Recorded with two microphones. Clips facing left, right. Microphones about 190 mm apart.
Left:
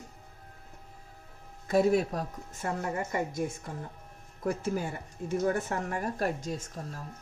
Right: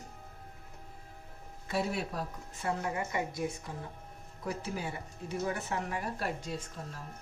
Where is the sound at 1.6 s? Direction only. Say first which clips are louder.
Left 9 dB; 45° left (ahead or behind).